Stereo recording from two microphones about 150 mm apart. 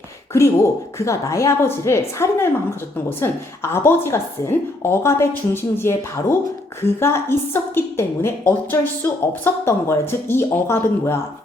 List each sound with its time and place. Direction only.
0.3 s a woman's voice: 20° left (ahead or behind)